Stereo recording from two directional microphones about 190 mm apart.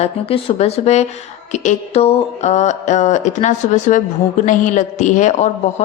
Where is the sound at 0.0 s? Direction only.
30° left (ahead or behind).